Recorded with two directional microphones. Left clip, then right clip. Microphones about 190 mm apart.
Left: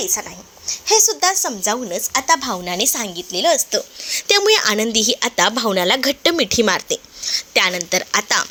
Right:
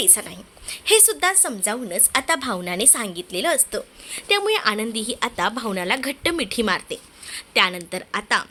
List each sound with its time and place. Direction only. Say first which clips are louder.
0.1 s a woman's voice: left 2 dB; 20° right (ahead or behind)
1.2 s a woman's voice: left 3 dB; centre (ahead or behind)
3.7 s a woman's voice: left 7 dB; 20° left (ahead or behind)
4.1 s a woman's voice: left 6 dB; 40° left (ahead or behind); by 8.4 s 15° left (ahead or behind)